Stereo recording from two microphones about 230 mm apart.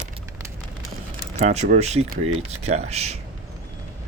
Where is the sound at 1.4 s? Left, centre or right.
Right.